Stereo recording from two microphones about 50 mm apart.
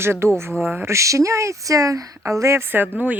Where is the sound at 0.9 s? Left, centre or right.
Right.